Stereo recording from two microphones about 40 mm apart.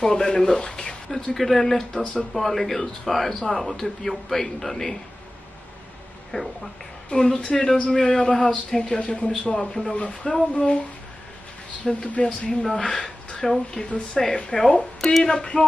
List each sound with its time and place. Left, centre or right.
0.0 s speech: centre
1.3 s speech: centre
6.3 s speech: centre
7.1 s speech: left
7.4 s speech: centre
11.9 s speech: centre